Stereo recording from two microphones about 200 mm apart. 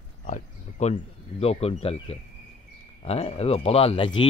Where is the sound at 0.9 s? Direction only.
30° left (ahead or behind).